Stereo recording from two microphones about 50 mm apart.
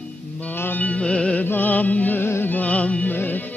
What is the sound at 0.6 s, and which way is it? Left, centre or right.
Music, left.